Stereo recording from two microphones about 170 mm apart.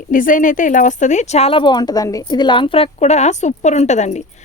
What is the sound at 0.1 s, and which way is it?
Speech, 50° left (ahead or behind).